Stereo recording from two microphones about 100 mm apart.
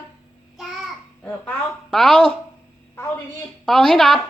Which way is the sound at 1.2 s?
15° left (ahead or behind).